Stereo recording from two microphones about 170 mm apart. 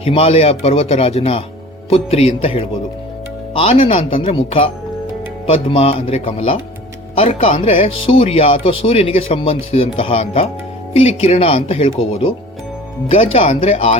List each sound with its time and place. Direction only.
0.0 s speech: 35° left (ahead or behind)